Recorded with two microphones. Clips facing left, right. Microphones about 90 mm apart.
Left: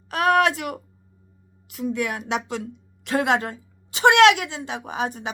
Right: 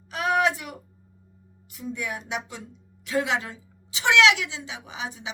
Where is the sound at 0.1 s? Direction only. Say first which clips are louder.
Left 4 dB; 65° left (ahead or behind).